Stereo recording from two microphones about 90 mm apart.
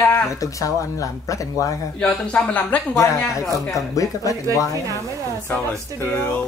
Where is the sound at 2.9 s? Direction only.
35° left (ahead or behind).